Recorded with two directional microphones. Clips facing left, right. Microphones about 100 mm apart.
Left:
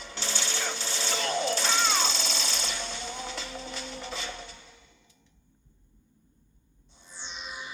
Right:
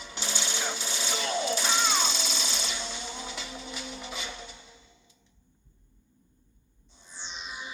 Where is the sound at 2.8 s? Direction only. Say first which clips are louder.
Left 1 dB; 15° right (ahead or behind).